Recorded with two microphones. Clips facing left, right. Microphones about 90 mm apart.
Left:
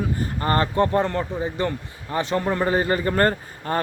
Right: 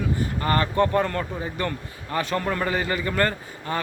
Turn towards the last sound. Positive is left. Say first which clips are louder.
# left 3 dB
turn(degrees=40)  # may be behind; listen again after turning